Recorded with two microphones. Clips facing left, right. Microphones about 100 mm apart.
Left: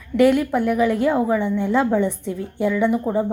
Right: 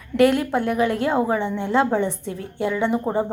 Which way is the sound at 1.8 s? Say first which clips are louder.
Left 2 dB; 25° right (ahead or behind).